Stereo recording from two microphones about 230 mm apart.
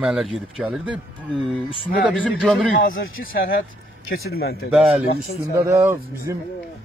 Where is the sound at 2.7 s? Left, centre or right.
Left.